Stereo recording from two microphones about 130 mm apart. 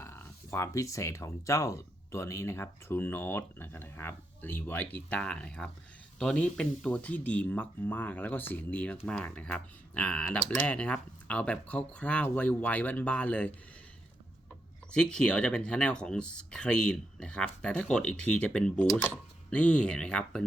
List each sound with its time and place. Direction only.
0.0 s speech: 20° left (ahead or behind)
14.9 s speech: 5° left (ahead or behind)